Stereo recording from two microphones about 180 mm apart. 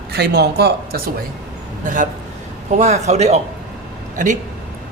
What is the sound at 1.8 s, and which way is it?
A man's voice, 45° right (ahead or behind).